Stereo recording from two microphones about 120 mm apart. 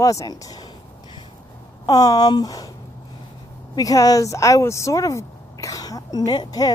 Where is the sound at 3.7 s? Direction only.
30° left (ahead or behind).